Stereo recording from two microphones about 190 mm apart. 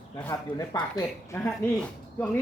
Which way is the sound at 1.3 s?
10° left (ahead or behind).